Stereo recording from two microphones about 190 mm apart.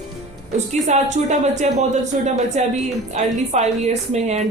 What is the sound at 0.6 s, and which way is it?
A woman's voice, 35° right (ahead or behind).